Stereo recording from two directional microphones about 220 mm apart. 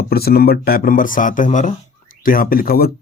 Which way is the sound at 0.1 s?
45° left (ahead or behind).